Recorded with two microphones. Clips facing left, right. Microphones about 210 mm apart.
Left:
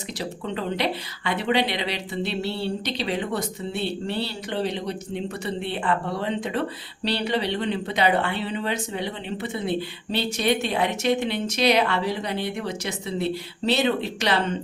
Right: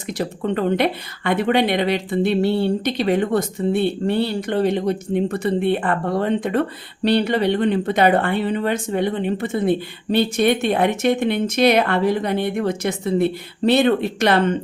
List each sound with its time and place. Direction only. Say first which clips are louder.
0.2 s speech: right 8 dB; 55° right (ahead or behind)